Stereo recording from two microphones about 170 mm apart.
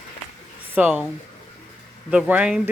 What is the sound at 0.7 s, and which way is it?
Speech, 10° right (ahead or behind).